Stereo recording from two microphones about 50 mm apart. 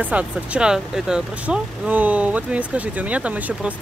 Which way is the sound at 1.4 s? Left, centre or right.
Right.